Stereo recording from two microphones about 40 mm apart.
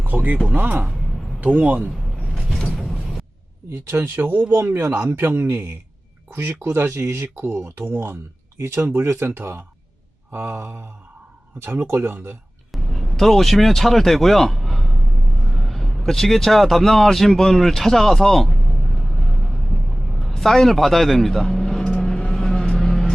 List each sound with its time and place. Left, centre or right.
0.0 s a sound: right
0.5 s speech: right
2.7 s mechanisms: centre
3.7 s speech: right
4.6 s speech: right
12.7 s a sound: centre
20.3 s speech: centre
22.0 s vehicle: centre